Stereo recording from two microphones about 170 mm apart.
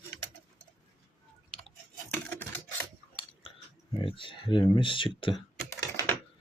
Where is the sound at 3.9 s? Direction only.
30° left (ahead or behind).